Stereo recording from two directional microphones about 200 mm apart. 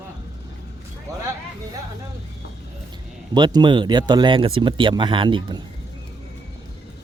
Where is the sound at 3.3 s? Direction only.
20° right (ahead or behind).